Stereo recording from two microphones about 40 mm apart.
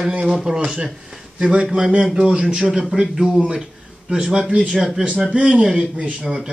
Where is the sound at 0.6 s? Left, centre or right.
Right.